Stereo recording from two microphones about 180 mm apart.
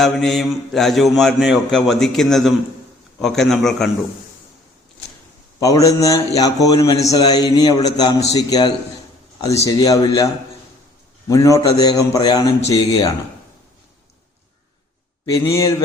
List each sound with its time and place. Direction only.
0.0 s mantra: centre (ahead or behind)
5.5 s a man's voice: 20° left (ahead or behind)
11.3 s a man's voice: 20° left (ahead or behind)
15.3 s a man's voice: 20° left (ahead or behind)